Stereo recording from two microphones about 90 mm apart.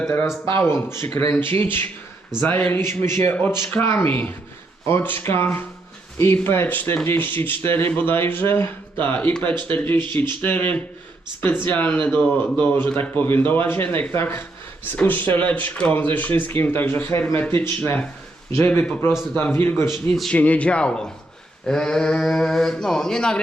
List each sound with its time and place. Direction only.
0.5 s a man's voice: 25° left (ahead or behind)
20.3 s a man's voice: 15° left (ahead or behind)